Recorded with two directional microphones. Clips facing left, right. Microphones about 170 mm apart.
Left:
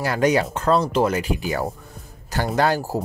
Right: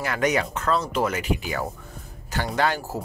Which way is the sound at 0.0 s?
35° left (ahead or behind).